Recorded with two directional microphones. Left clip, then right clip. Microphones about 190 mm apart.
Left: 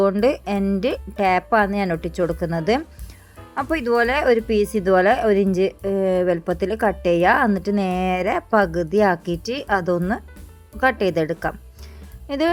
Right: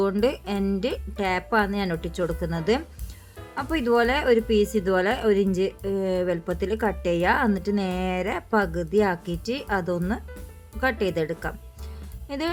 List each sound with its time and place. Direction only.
0.0 s speech: 15° left (ahead or behind)